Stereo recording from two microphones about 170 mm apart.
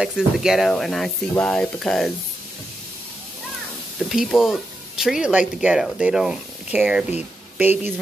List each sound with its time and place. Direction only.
0.0 s speech: 5° right (ahead or behind)
4.1 s speech: centre (ahead or behind)